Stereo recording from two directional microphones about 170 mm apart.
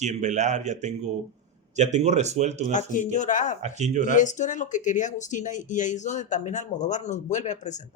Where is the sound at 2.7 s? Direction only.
45° left (ahead or behind).